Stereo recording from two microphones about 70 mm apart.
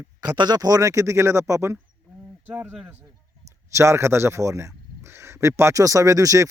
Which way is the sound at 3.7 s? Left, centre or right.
Right.